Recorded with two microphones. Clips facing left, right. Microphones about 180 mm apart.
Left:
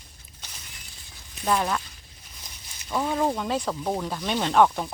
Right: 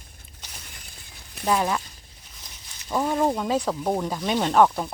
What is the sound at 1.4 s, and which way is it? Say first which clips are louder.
Speech: right 2 dB; 5° right (ahead or behind).